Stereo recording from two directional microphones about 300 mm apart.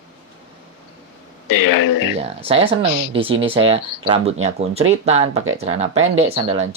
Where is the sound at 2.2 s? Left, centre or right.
Centre.